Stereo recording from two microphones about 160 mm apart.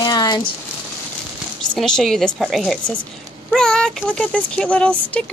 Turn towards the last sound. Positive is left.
turn(degrees=10)  # may be behind; listen again after turning